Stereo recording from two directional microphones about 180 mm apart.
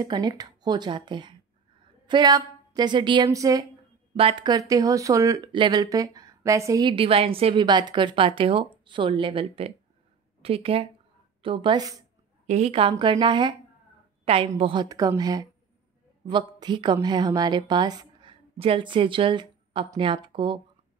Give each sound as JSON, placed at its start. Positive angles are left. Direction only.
{"t": 0.0, "sound": "speech", "side_deg": -20}
{"t": 4.2, "sound": "speech", "side_deg": -30}
{"t": 12.4, "sound": "a woman's voice", "side_deg": -35}